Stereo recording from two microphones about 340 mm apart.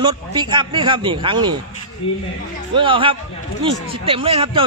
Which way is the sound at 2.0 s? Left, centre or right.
Centre.